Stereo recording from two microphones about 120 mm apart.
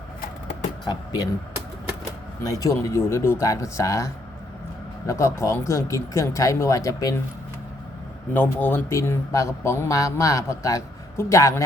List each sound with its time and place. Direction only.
0.9 s speech: 35° left (ahead or behind)
2.4 s speech: 30° left (ahead or behind)
8.3 s speech: 15° left (ahead or behind)